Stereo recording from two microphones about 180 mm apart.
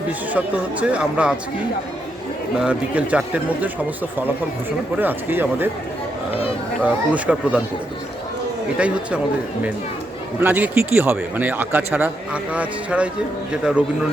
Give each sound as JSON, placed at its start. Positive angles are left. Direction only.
{"t": 0.3, "sound": "a man's voice", "side_deg": -5}
{"t": 2.6, "sound": "a man's voice", "side_deg": -5}
{"t": 4.9, "sound": "a man's voice", "side_deg": -10}
{"t": 6.8, "sound": "a man's voice", "side_deg": -10}
{"t": 8.8, "sound": "a man's voice", "side_deg": -5}
{"t": 10.4, "sound": "a man's voice", "side_deg": -10}